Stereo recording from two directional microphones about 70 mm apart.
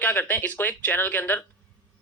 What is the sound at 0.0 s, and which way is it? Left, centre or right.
Speech, left.